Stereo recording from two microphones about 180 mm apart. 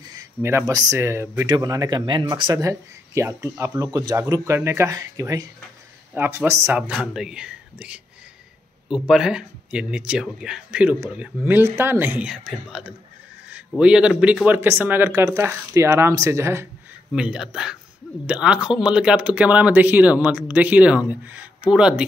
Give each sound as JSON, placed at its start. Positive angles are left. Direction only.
{"t": 0.1, "sound": "speech", "side_deg": -15}
{"t": 6.8, "sound": "speech", "side_deg": 0}
{"t": 17.1, "sound": "speech", "side_deg": -5}